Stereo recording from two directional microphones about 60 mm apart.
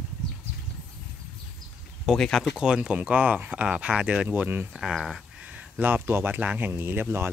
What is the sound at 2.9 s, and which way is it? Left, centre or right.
Speech, right.